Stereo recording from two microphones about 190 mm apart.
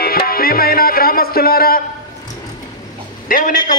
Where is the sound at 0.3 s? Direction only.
50° left (ahead or behind).